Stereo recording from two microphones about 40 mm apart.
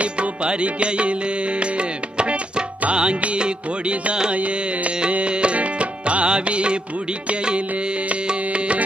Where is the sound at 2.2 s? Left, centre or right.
Right.